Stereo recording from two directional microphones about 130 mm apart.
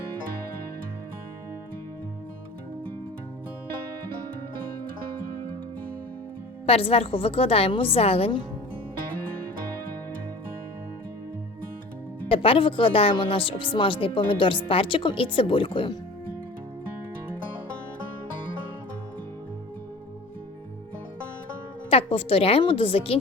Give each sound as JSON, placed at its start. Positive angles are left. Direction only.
{"t": 6.7, "sound": "a woman's voice", "side_deg": 50}
{"t": 12.3, "sound": "speech", "side_deg": 45}
{"t": 21.8, "sound": "a woman's voice", "side_deg": 45}